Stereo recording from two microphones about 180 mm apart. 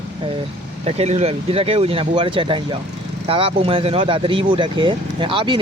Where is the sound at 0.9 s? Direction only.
35° right (ahead or behind).